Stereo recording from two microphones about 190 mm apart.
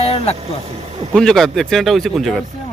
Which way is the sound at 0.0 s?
30° left (ahead or behind).